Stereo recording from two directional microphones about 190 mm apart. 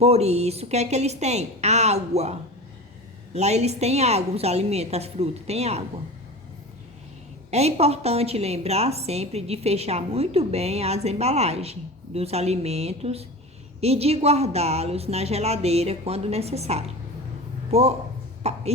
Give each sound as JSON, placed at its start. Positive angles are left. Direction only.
{"t": 0.0, "sound": "a woman's voice", "side_deg": -35}
{"t": 3.3, "sound": "a woman's voice", "side_deg": -35}
{"t": 7.5, "sound": "a woman's voice", "side_deg": -35}
{"t": 18.4, "sound": "a sound", "side_deg": -35}